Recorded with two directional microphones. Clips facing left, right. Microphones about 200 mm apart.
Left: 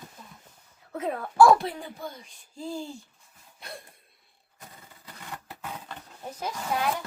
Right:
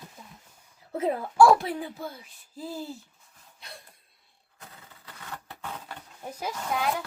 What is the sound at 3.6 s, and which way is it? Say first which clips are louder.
Cough: left 5 dB; 55° left (ahead or behind).